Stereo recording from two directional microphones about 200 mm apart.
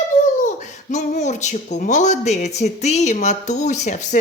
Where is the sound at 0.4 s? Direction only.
35° left (ahead or behind).